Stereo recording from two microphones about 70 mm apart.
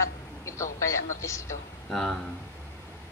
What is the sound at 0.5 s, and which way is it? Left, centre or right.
A woman's voice, left.